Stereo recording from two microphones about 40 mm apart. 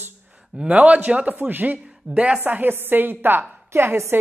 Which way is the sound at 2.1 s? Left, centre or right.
Right.